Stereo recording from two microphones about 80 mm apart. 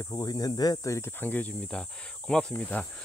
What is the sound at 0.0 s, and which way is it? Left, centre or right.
Speech, left.